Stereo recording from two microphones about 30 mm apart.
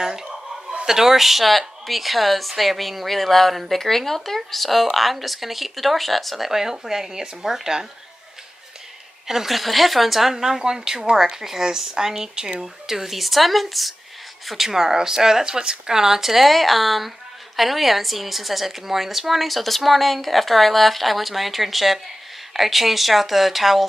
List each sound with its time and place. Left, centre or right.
0.8 s speech: centre
6.5 s speech: centre
9.5 s speech: centre
10.3 s speech: centre
12.8 s speech: centre
14.7 s speech: centre